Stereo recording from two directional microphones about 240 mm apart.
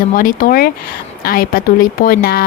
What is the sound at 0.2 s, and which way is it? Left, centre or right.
A woman's voice, left.